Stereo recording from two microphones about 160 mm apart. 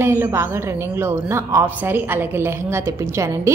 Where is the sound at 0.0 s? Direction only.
15° right (ahead or behind).